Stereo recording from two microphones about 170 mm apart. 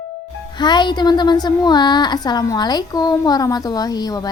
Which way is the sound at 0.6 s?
25° left (ahead or behind).